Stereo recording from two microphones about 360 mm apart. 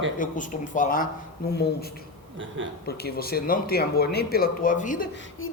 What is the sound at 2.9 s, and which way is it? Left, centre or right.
Speech, left.